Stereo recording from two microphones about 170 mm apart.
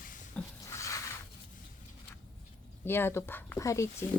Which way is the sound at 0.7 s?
20° left (ahead or behind).